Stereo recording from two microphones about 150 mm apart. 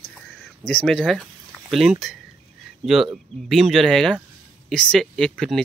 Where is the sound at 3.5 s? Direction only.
Centre (ahead or behind).